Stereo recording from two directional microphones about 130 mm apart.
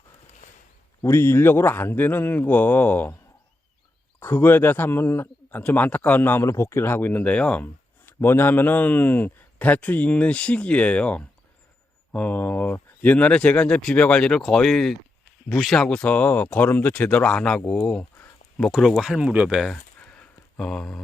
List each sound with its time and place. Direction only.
1.0 s a man's voice: 20° left (ahead or behind)
4.2 s a man's voice: 15° left (ahead or behind); by 19.7 s 5° right (ahead or behind)
19.7 s a sound: 10° left (ahead or behind)